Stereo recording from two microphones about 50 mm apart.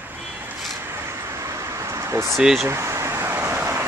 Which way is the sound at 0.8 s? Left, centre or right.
Right.